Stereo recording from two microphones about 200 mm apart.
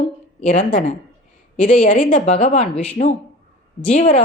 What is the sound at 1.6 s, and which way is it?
Speech, 40° left (ahead or behind).